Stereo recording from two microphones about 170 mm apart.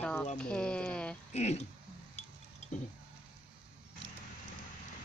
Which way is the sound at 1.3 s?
40° left (ahead or behind).